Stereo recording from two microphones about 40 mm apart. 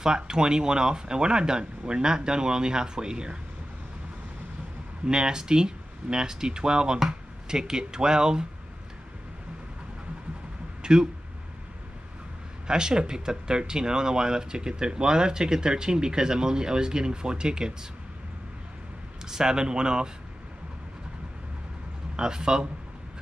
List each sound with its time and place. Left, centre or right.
0.0 s speech: centre
5.0 s speech: right
10.8 s a sound: centre
12.6 s speech: centre
19.2 s speech: centre
22.1 s speech: centre